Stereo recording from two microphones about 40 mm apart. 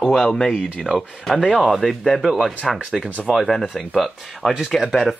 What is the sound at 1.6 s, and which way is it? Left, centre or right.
Speech, centre.